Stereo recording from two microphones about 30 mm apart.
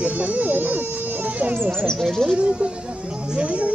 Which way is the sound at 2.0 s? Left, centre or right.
Centre.